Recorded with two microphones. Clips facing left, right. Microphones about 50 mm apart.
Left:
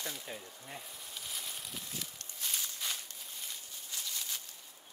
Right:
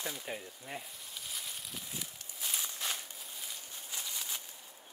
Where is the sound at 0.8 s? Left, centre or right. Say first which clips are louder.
Even; centre.